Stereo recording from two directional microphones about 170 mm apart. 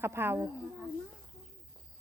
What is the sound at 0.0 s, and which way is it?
Speech, 15° right (ahead or behind).